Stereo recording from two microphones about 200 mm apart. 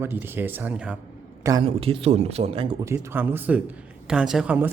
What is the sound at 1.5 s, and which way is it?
A man's voice, 25° right (ahead or behind).